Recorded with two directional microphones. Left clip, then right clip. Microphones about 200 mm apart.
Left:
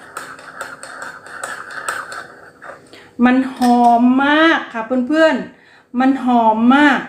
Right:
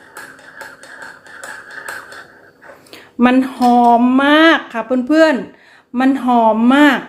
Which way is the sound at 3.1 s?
45° right (ahead or behind).